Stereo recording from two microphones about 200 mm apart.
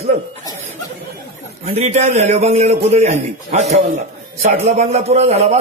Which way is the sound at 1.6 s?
35° right (ahead or behind).